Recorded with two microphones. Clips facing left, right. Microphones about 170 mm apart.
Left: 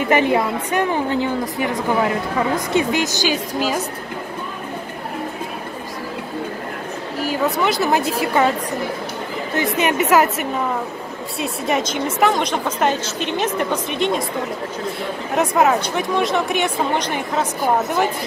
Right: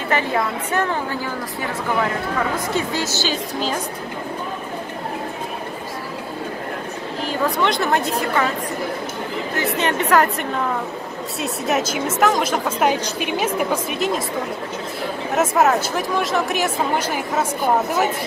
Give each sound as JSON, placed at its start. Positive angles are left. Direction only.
{"t": 0.1, "sound": "a woman's voice", "side_deg": 15}
{"t": 7.2, "sound": "a woman's voice", "side_deg": 10}
{"t": 9.6, "sound": "a woman's voice", "side_deg": 10}
{"t": 11.3, "sound": "a woman's voice", "side_deg": 0}
{"t": 15.3, "sound": "a woman's voice", "side_deg": 0}